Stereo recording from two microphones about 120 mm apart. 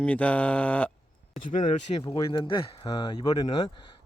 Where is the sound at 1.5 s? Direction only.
90° left.